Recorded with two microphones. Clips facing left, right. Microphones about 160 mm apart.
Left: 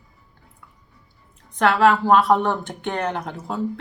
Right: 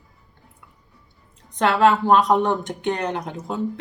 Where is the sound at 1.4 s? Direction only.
20° right (ahead or behind).